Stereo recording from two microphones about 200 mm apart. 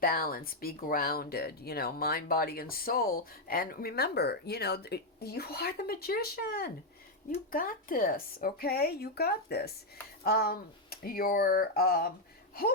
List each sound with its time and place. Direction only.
0.0 s speech: 50° left (ahead or behind)